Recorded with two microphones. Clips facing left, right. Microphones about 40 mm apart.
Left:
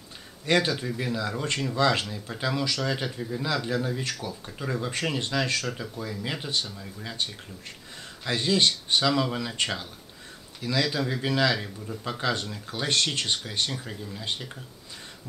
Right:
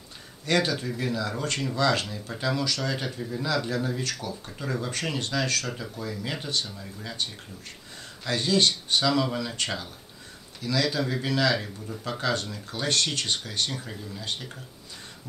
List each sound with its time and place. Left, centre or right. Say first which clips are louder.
0.6 s a man's voice: even; centre
2.0 s speech: even; centre
2.3 s a man's voice: even; centre
4.6 s a man's voice: left 1 dB; centre
10.6 s a man's voice: even; centre
12.8 s speech: left 1 dB; left
13.7 s a man's voice: even; centre